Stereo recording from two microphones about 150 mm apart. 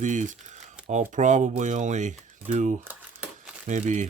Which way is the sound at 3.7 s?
55° right (ahead or behind).